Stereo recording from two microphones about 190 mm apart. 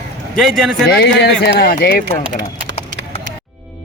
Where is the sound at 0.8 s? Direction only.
65° left (ahead or behind).